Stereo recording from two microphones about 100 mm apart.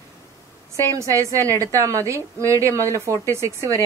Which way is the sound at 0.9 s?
35° right (ahead or behind).